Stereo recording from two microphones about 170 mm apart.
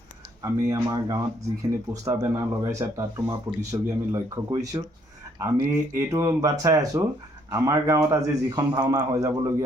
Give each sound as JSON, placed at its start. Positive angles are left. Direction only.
{"t": 0.4, "sound": "speech", "side_deg": -20}